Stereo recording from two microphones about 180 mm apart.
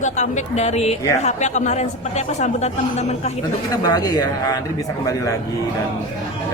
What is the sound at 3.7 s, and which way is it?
Speech, 20° left (ahead or behind).